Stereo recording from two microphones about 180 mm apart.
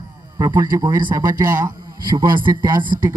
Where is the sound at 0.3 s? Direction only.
20° right (ahead or behind).